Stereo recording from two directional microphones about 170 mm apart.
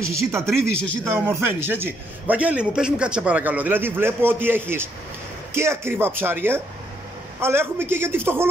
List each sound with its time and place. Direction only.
0.0 s a man's voice: 15° right (ahead or behind)